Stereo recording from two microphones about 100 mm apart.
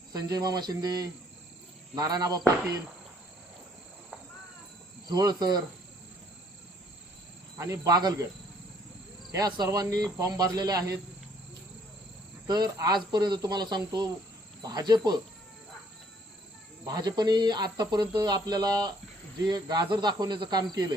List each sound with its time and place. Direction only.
0.1 s speech: 40° right (ahead or behind)
5.0 s speech: 45° right (ahead or behind)
7.6 s speech: 35° right (ahead or behind)
9.3 s speech: 40° right (ahead or behind)
12.5 s speech: 45° right (ahead or behind)
16.8 s speech: 40° right (ahead or behind)